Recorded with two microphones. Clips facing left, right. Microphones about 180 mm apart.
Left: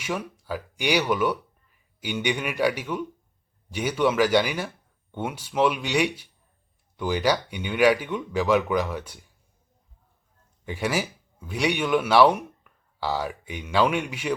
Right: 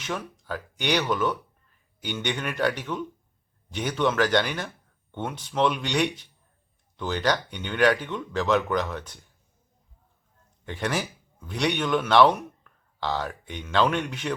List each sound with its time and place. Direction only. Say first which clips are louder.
0.0 s speech: left 2 dB; 10° left (ahead or behind)
10.7 s speech: left 2 dB; 10° left (ahead or behind)